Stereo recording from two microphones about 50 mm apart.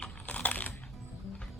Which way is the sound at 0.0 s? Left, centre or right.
Left.